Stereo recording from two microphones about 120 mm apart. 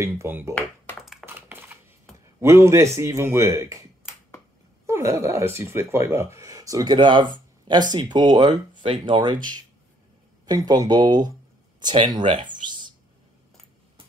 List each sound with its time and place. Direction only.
0.0 s speech: 20° right (ahead or behind)
1.2 s typing: 20° right (ahead or behind)
2.1 s a sound: 5° left (ahead or behind)
2.4 s speech: 20° right (ahead or behind)
4.8 s speech: 25° right (ahead or behind); by 12.9 s 40° right (ahead or behind)